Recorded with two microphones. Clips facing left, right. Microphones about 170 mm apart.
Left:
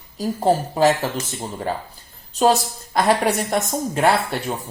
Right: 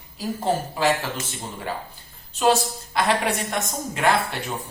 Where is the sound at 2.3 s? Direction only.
40° left (ahead or behind).